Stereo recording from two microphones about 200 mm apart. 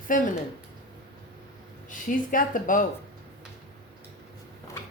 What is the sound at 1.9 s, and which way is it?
Speech, 40° left (ahead or behind).